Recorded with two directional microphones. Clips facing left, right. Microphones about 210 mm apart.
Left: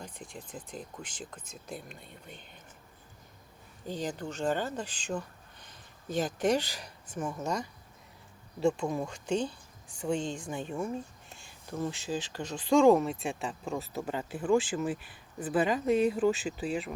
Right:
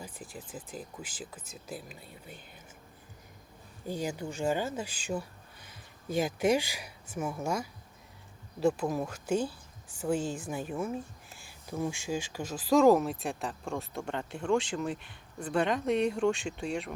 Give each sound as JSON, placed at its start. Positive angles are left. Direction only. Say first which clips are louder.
{"t": 0.0, "sound": "speech", "louder": "even", "side_deg": -5}
{"t": 3.8, "sound": "speech", "louder": "right 1 dB", "side_deg": -10}